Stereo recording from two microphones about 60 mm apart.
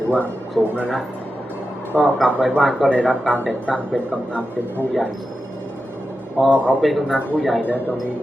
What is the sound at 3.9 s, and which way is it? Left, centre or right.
Speech, left.